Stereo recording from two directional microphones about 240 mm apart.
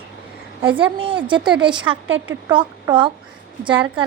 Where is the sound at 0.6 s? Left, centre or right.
Right.